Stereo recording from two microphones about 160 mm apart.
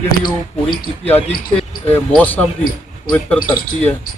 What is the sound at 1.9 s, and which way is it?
Speech, 10° left (ahead or behind).